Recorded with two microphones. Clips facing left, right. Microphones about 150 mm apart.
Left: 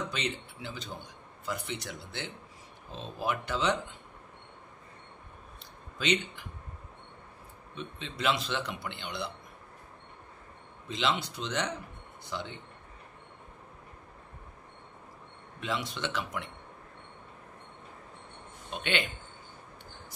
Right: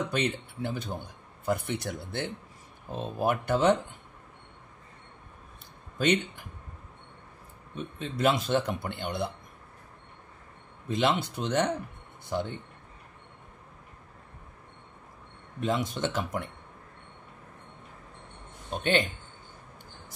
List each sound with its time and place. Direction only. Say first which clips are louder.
0.1 s a man's voice: right 6 dB; 55° right (ahead or behind)
5.9 s speech: right 4 dB; 50° right (ahead or behind)
7.7 s speech: right 5 dB; 45° right (ahead or behind)
10.9 s speech: right 5 dB; 50° right (ahead or behind)
15.6 s speech: right 6 dB; 45° right (ahead or behind)
18.7 s speech: right 6 dB; 40° right (ahead or behind)